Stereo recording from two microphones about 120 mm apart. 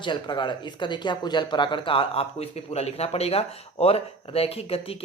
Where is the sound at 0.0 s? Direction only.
40° left (ahead or behind).